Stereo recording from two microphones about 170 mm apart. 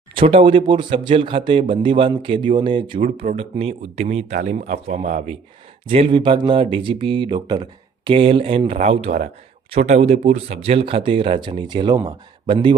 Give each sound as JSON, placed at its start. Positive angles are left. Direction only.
{"t": 0.1, "sound": "speech", "side_deg": -35}
{"t": 3.0, "sound": "a man's voice", "side_deg": -40}